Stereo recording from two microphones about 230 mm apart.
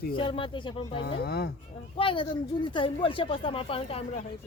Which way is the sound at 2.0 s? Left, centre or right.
Left.